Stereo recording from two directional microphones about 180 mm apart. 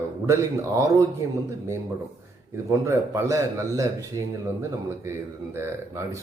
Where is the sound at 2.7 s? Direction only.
15° right (ahead or behind).